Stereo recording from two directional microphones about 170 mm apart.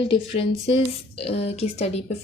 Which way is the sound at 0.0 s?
30° left (ahead or behind).